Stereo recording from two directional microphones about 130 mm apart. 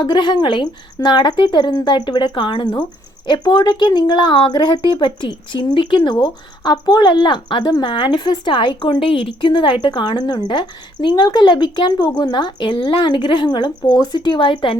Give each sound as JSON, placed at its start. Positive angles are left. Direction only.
{"t": 0.0, "sound": "speech", "side_deg": 35}